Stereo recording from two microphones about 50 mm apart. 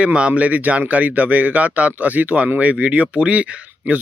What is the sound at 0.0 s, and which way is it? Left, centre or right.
Speech, right.